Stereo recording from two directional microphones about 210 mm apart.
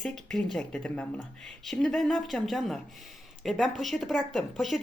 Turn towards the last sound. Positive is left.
turn(degrees=0)  # may be behind; listen again after turning